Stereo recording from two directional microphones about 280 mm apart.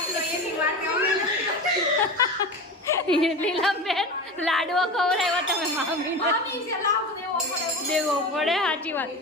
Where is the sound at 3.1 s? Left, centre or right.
Centre.